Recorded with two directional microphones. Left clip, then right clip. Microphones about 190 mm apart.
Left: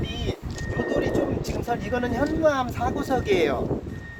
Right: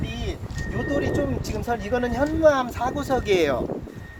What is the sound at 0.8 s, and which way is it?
Speech, 10° right (ahead or behind).